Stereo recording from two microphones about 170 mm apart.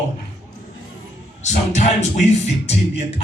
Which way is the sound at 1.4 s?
45° left (ahead or behind).